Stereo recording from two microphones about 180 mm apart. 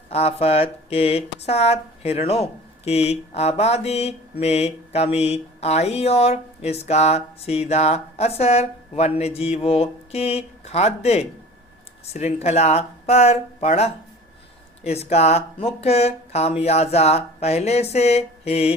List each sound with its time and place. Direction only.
0.1 s speech: 35° left (ahead or behind)